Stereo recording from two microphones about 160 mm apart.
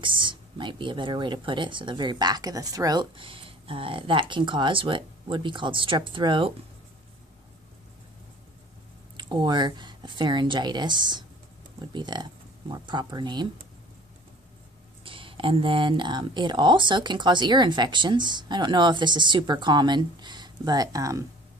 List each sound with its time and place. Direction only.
0.0 s speech: 30° right (ahead or behind)
9.1 s speech: 30° right (ahead or behind)
15.0 s speech: 35° right (ahead or behind)